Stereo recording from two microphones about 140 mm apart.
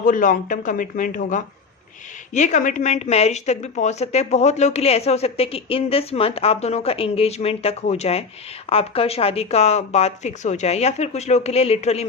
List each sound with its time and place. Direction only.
0.0 s a woman's voice: 70° left (ahead or behind); by 12.0 s 50° left (ahead or behind)